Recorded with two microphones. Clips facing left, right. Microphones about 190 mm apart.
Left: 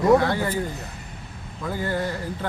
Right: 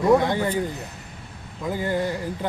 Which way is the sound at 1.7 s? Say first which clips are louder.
Right 2 dB; 15° right (ahead or behind).